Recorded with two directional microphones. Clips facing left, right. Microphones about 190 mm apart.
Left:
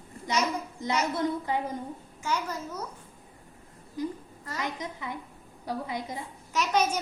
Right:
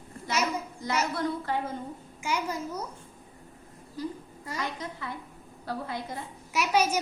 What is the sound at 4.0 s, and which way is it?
A woman's voice, 20° left (ahead or behind).